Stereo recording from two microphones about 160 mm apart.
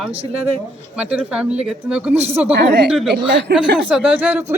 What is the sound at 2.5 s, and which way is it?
Speech, 90° right.